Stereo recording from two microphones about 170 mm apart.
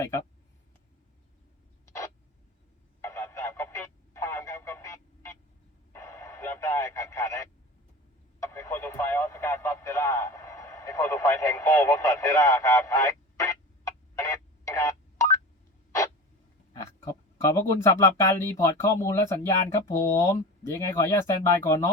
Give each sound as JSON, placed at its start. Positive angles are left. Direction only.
{"t": 3.0, "sound": "a sound", "side_deg": 15}
{"t": 8.4, "sound": "radio", "side_deg": 15}
{"t": 14.2, "sound": "telephone dialing", "side_deg": 20}
{"t": 17.4, "sound": "speech", "side_deg": 20}